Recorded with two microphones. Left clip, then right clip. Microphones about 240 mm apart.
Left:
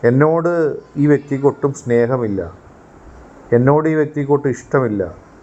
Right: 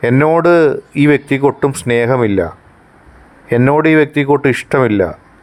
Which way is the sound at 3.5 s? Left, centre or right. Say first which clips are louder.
Right 3 dB; right.